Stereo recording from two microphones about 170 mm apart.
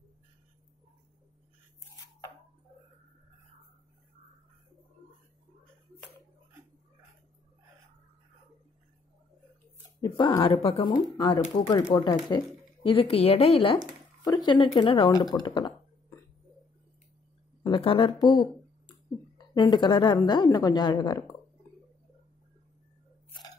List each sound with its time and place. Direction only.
10.0 s speech: 25° left (ahead or behind)
17.6 s speech: 30° left (ahead or behind)